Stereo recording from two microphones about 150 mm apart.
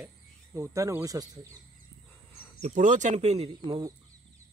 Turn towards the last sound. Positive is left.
turn(degrees=-25)  # may be behind; listen again after turning